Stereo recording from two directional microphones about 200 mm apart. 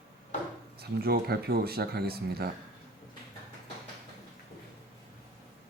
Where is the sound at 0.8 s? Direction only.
50° right (ahead or behind).